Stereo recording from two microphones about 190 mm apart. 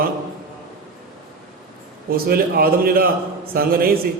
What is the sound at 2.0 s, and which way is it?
A man's voice, 50° right (ahead or behind).